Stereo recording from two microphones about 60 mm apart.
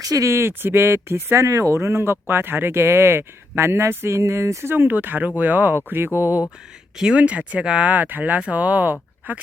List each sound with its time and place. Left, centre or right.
0.0 s speech: right
0.3 s speech: right
4.7 s speech: right
6.2 s a sound: left
6.9 s speech: centre; by 9.4 s right